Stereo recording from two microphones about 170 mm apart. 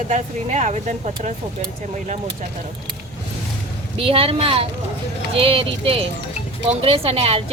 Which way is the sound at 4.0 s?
35° right (ahead or behind).